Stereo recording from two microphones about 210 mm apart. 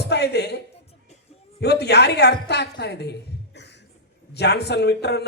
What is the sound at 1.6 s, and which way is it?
A man's voice, 50° left (ahead or behind).